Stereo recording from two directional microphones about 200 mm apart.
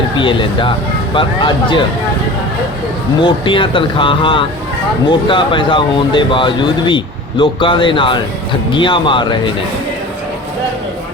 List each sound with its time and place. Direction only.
0.2 s speech: 25° left (ahead or behind)
3.2 s speech: 25° left (ahead or behind)